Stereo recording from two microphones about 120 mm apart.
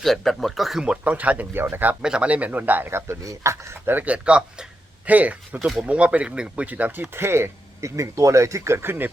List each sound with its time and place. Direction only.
0.0 s speech: 5° left (ahead or behind); by 9.0 s 20° right (ahead or behind)